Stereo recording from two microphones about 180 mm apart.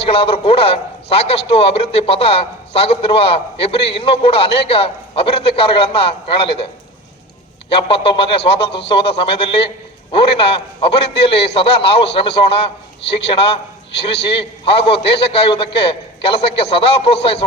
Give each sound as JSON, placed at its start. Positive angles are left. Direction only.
{"t": 0.0, "sound": "a man's voice", "side_deg": 30}
{"t": 7.7, "sound": "a man's voice", "side_deg": 30}